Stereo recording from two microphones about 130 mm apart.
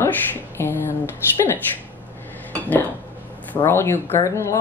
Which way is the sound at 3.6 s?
20° left (ahead or behind).